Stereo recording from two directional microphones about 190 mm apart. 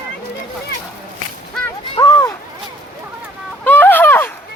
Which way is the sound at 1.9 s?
25° left (ahead or behind).